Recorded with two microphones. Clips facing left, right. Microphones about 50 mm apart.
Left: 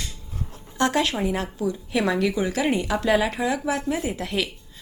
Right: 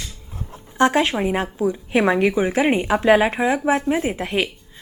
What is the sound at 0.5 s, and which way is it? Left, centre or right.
A woman's voice, right.